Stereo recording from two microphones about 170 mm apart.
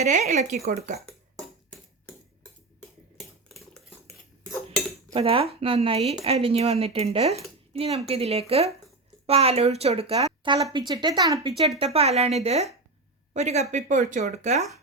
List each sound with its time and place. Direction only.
0.0 s speech: 45° right (ahead or behind)
3.5 s cutlery: centre (ahead or behind)
5.1 s speech: 35° right (ahead or behind)
11.9 s speech: 40° right (ahead or behind)